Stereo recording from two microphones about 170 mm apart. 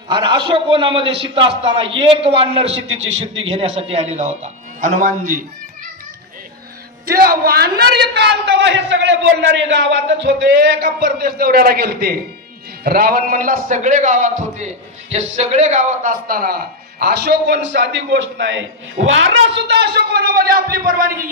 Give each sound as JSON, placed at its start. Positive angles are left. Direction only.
{"t": 0.1, "sound": "a man's voice", "side_deg": -30}
{"t": 3.0, "sound": "a man's voice", "side_deg": -90}
{"t": 3.3, "sound": "a man's voice", "side_deg": -35}
{"t": 7.1, "sound": "a man's voice", "side_deg": -60}